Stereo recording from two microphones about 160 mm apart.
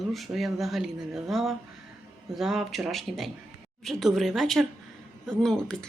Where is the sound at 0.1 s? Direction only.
Centre (ahead or behind).